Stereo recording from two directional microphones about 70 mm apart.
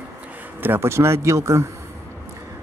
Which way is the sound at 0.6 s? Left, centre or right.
Right.